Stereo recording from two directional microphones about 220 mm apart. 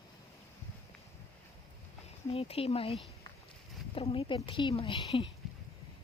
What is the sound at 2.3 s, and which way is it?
A woman's voice, 25° left (ahead or behind).